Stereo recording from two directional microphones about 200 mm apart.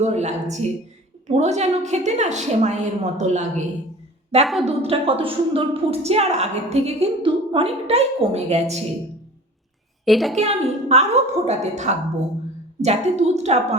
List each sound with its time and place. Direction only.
0.0 s a woman's voice: 35° right (ahead or behind)
10.1 s a woman's voice: centre (ahead or behind)
10.3 s a woman's voice: 30° right (ahead or behind)